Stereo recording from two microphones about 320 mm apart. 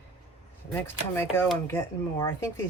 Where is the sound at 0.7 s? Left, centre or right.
Centre.